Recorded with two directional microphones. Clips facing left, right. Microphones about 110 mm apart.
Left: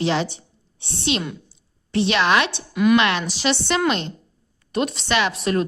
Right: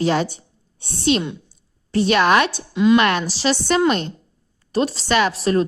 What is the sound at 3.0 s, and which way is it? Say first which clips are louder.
A woman's voice: right 2 dB; 45° right (ahead or behind).